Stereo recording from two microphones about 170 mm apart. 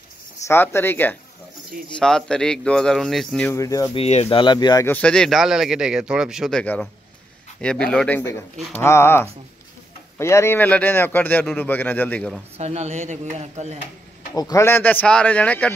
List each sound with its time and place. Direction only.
0.5 s speech: 15° left (ahead or behind)
3.5 s speech: 20° left (ahead or behind)
3.9 s speech: 35° left (ahead or behind)
4.8 s speech: 10° left (ahead or behind)
12.5 s speech: 40° right (ahead or behind)
14.3 s speech: 20° left (ahead or behind)